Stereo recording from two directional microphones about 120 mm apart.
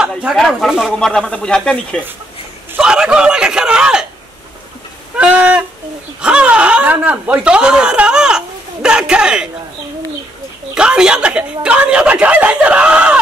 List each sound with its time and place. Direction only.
0.2 s speech: 5° right (ahead or behind)
2.8 s speech: 5° right (ahead or behind)
5.1 s a sound: 10° right (ahead or behind)
6.2 s speech: 10° right (ahead or behind)
10.7 s speech: 5° right (ahead or behind)